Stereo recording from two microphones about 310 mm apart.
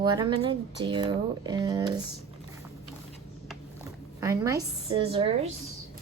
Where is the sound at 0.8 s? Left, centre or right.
Centre.